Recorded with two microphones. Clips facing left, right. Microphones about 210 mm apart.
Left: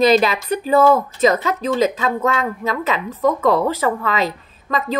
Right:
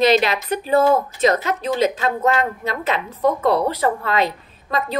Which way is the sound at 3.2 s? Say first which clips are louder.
Left 1 dB; 90° left.